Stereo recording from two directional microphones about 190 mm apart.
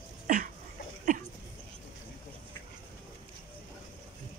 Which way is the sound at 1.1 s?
40° right (ahead or behind).